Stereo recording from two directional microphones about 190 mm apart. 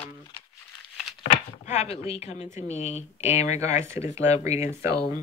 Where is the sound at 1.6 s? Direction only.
35° left (ahead or behind).